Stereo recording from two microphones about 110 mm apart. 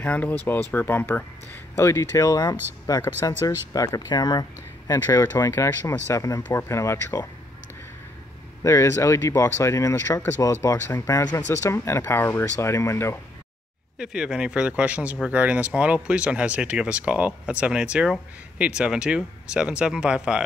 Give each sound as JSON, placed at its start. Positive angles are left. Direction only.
{"t": 0.0, "sound": "speech", "side_deg": 15}
{"t": 3.0, "sound": "speech", "side_deg": 20}
{"t": 3.4, "sound": "speech", "side_deg": 35}
{"t": 8.6, "sound": "speech", "side_deg": 25}
{"t": 13.9, "sound": "speech", "side_deg": -5}